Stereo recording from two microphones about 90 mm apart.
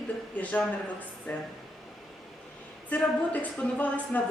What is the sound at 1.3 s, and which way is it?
Speech, 15° left (ahead or behind).